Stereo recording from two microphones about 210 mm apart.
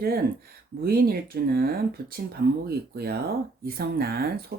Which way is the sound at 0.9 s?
45° right (ahead or behind).